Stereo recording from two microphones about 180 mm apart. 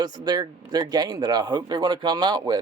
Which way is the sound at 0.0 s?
25° right (ahead or behind).